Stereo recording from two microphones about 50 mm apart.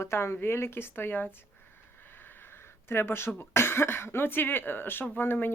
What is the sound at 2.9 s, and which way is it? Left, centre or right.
Speech, left.